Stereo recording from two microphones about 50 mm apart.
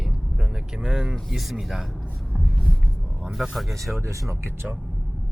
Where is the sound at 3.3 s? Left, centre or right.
Centre.